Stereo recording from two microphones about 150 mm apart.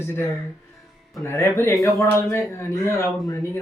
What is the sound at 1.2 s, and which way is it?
Speech, 15° left (ahead or behind).